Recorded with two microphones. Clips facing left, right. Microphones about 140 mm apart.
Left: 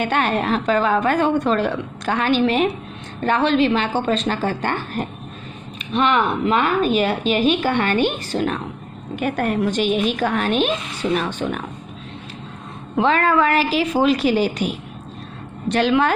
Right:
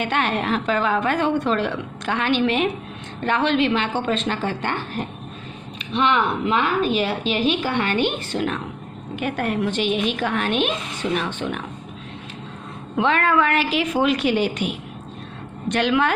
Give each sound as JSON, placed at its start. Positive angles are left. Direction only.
{"t": 0.0, "sound": "a woman's voice", "side_deg": 40}
{"t": 12.9, "sound": "a woman's voice", "side_deg": 35}